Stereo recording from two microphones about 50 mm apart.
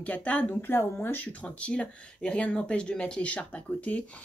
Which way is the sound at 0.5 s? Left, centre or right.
Left.